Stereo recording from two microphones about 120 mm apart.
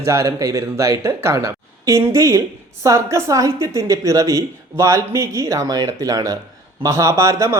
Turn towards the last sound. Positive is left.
turn(degrees=-25)  # may be behind; listen again after turning